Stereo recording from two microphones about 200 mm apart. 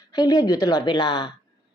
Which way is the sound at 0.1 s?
20° left (ahead or behind).